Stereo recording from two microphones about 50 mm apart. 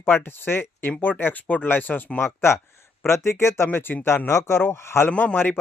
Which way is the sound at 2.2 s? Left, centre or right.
Left.